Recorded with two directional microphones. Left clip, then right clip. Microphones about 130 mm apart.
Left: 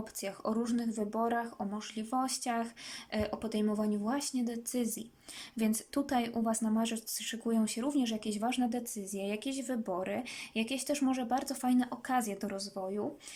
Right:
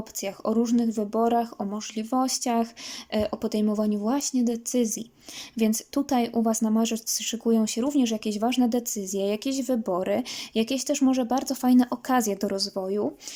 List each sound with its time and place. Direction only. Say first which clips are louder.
0.2 s speech: right 9 dB; 15° right (ahead or behind); by 13.1 s 35° right (ahead or behind)